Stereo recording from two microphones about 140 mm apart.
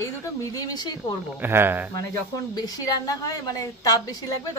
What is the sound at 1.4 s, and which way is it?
Speech, 15° right (ahead or behind).